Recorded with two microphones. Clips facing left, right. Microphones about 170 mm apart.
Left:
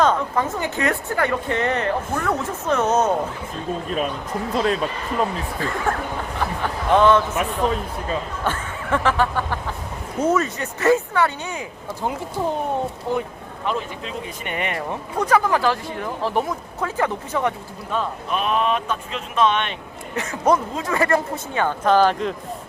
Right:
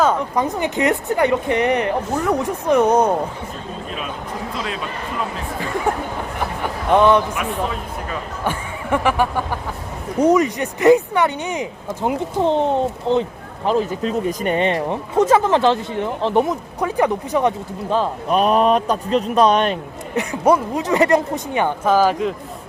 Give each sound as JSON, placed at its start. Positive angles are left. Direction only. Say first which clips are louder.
{"t": 0.0, "sound": "a woman's voice", "louder": "right 1 dB", "side_deg": -10}
{"t": 4.5, "sound": "speech", "louder": "left 9 dB", "side_deg": 40}
{"t": 5.9, "sound": "a woman's voice", "louder": "right 3 dB", "side_deg": -15}
{"t": 6.6, "sound": "a sound", "louder": "right 2 dB", "side_deg": -15}
{"t": 8.4, "sound": "a woman's voice", "louder": "right 4 dB", "side_deg": -15}
{"t": 13.7, "sound": "speech", "louder": "right 8 dB", "side_deg": -40}
{"t": 17.8, "sound": "speech", "louder": "right 6 dB", "side_deg": -30}
{"t": 20.1, "sound": "a woman's voice", "louder": "right 3 dB", "side_deg": -15}
{"t": 21.8, "sound": "a woman's voice", "louder": "even", "side_deg": -5}